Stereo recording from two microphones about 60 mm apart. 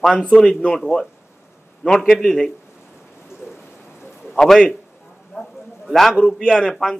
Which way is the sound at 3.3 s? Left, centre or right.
Left.